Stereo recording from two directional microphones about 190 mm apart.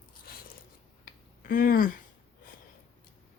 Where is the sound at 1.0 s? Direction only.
50° left (ahead or behind).